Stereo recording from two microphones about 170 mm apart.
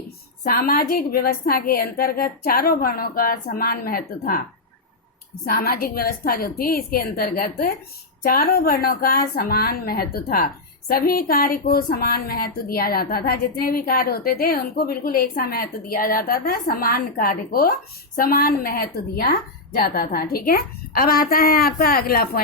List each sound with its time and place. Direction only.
0.4 s a woman's voice: 60° left (ahead or behind)
5.5 s a woman's voice: 65° left (ahead or behind)